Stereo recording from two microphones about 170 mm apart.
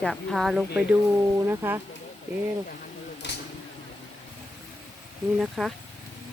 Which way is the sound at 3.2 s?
90° left.